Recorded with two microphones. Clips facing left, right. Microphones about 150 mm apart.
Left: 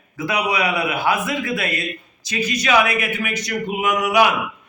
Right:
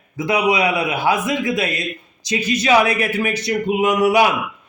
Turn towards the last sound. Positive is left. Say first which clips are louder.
# right 3 dB
turn(degrees=-30)  # may be behind; listen again after turning